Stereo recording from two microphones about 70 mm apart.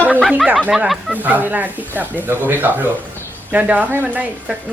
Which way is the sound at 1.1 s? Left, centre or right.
Right.